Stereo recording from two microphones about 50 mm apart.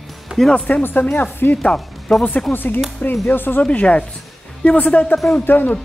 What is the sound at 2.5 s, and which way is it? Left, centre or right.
A man's voice, left.